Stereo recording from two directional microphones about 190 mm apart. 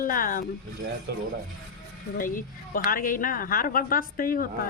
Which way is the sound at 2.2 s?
45° left (ahead or behind).